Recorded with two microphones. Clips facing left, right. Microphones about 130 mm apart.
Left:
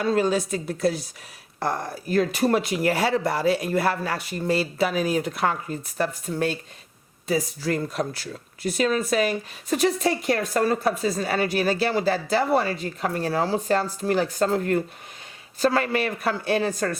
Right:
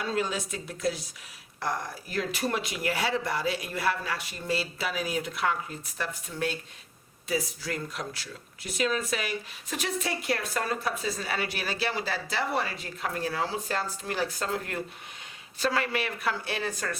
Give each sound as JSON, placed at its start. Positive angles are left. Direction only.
{"t": 0.0, "sound": "speech", "side_deg": 45}
{"t": 1.5, "sound": "speech", "side_deg": 55}